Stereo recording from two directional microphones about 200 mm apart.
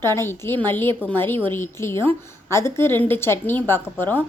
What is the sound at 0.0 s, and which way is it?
A woman's voice, 10° left (ahead or behind).